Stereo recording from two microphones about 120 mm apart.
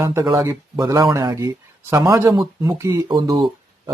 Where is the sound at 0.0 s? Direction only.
25° right (ahead or behind).